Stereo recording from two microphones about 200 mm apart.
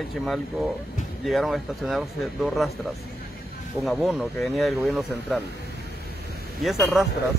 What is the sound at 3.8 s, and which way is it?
Speech, centre (ahead or behind).